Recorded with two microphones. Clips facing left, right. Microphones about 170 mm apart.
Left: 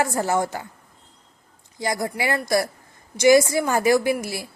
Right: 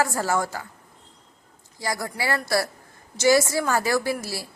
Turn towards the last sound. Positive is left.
turn(degrees=20)  # may be behind; listen again after turning